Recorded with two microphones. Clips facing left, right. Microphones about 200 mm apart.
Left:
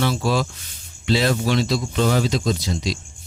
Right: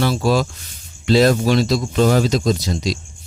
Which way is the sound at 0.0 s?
40° right (ahead or behind).